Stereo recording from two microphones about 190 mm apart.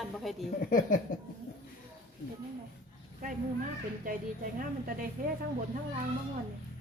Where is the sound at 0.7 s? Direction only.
45° left (ahead or behind).